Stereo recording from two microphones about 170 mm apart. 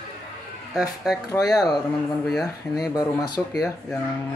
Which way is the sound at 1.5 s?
20° left (ahead or behind).